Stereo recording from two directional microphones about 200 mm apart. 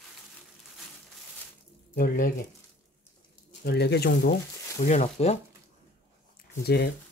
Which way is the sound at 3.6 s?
55° left (ahead or behind).